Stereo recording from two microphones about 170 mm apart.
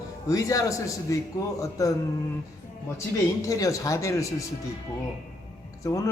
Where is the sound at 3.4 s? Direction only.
20° left (ahead or behind).